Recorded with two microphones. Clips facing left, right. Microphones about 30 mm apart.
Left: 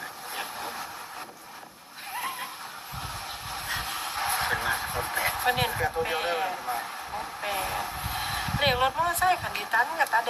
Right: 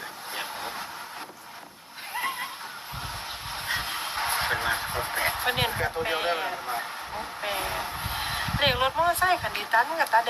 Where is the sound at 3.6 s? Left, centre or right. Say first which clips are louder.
Right 3 dB; right.